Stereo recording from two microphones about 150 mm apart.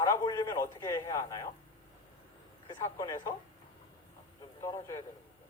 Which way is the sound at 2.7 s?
25° left (ahead or behind).